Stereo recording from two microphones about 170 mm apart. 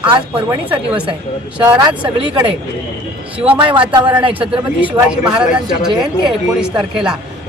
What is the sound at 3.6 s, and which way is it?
Speech, 30° right (ahead or behind).